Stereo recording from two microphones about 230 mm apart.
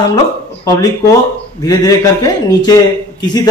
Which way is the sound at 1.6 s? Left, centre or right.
Centre.